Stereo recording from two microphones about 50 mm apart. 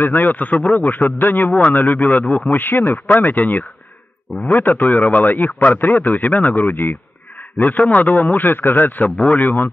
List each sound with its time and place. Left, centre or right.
0.0 s speech: left